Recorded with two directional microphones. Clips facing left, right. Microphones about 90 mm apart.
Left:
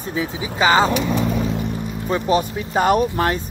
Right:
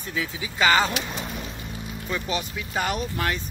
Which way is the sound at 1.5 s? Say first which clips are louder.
Left 12 dB; 65° left (ahead or behind).